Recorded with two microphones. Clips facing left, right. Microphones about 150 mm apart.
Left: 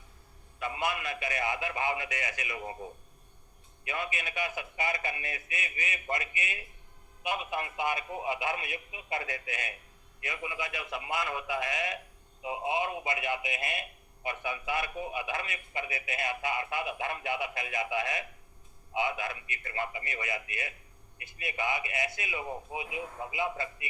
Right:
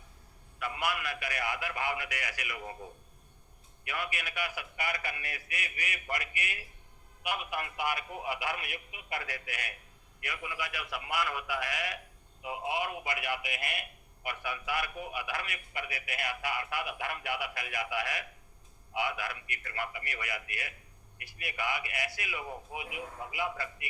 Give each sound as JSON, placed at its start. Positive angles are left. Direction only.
{"t": 0.6, "sound": "a man's voice", "side_deg": 20}